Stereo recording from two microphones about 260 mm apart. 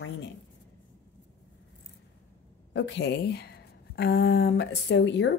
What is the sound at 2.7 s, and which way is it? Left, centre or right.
Speech, left.